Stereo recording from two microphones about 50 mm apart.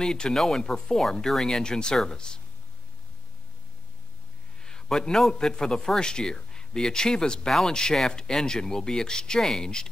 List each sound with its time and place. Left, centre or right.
0.0 s a man's voice: centre
4.6 s a man's voice: centre